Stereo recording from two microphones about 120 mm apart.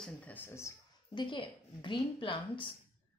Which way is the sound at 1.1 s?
40° left (ahead or behind).